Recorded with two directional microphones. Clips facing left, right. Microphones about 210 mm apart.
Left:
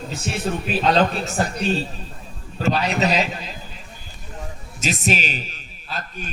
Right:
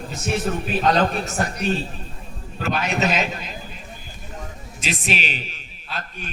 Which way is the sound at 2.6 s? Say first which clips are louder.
Left 2 dB; 35° left (ahead or behind).